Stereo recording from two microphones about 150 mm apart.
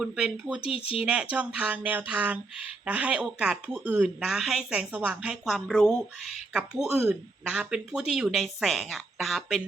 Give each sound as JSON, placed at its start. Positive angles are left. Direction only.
{"t": 0.0, "sound": "speech", "side_deg": -5}
{"t": 0.6, "sound": "speech", "side_deg": 40}
{"t": 0.9, "sound": "speech", "side_deg": -5}